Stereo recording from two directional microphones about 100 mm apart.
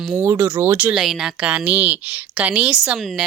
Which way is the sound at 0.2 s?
25° right (ahead or behind).